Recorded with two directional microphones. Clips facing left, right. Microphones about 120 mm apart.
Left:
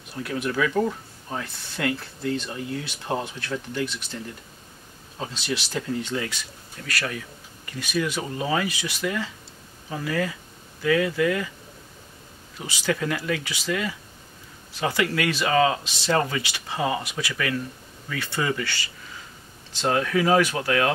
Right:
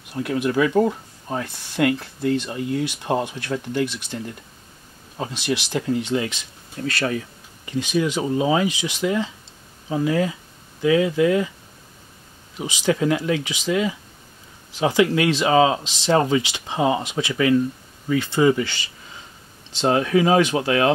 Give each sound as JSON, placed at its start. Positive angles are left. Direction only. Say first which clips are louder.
{"t": 0.2, "sound": "speech", "louder": "right 5 dB", "side_deg": -20}
{"t": 12.5, "sound": "speech", "louder": "right 5 dB", "side_deg": -20}